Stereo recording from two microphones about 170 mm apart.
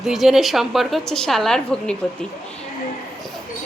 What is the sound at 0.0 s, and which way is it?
A woman's voice, centre (ahead or behind).